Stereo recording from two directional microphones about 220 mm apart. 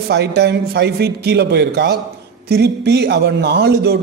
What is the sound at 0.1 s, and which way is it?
A man's voice, 50° right (ahead or behind).